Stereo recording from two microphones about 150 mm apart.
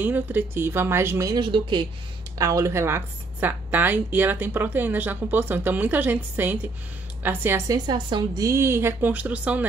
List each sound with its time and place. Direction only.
0.0 s a woman's voice: 15° right (ahead or behind)
1.4 s speech: 30° right (ahead or behind)
2.3 s a woman's voice: 20° right (ahead or behind)